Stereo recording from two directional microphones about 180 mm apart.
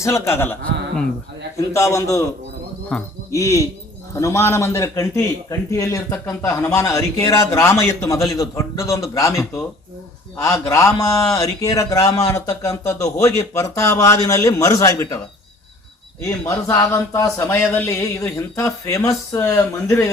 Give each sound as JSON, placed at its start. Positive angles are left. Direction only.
{"t": 0.0, "sound": "a man's voice", "side_deg": 15}
{"t": 1.5, "sound": "a man's voice", "side_deg": 15}
{"t": 2.9, "sound": "speech", "side_deg": 5}
{"t": 3.3, "sound": "a man's voice", "side_deg": 15}
{"t": 16.2, "sound": "a man's voice", "side_deg": 15}